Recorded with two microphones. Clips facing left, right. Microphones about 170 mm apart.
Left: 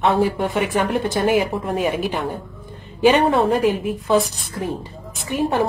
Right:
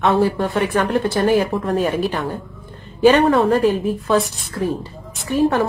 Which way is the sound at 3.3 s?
20° left (ahead or behind).